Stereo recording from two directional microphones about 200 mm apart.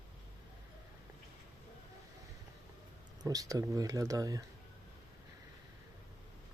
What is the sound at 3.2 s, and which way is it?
Speech, 15° right (ahead or behind).